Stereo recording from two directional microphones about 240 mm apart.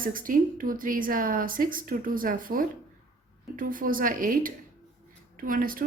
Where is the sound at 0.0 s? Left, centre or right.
Right.